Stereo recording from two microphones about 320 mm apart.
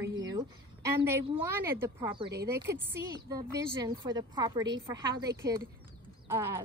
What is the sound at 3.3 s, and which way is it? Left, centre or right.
A woman's voice, centre.